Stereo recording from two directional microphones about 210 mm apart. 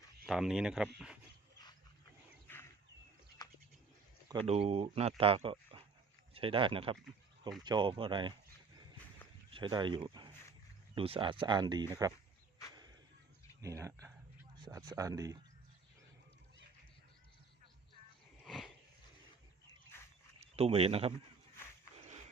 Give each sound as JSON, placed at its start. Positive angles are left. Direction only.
{"t": 0.3, "sound": "speech", "side_deg": 0}
{"t": 3.4, "sound": "bird", "side_deg": 20}
{"t": 4.3, "sound": "speech", "side_deg": -25}
{"t": 9.5, "sound": "speech", "side_deg": -25}
{"t": 12.7, "sound": "a sound", "side_deg": -20}
{"t": 13.6, "sound": "speech", "side_deg": -15}
{"t": 18.4, "sound": "a sound", "side_deg": 0}
{"t": 20.4, "sound": "speech", "side_deg": -30}